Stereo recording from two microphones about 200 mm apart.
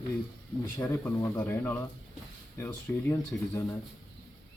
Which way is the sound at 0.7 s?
10° left (ahead or behind).